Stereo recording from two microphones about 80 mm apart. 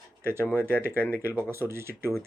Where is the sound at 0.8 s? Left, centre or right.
Right.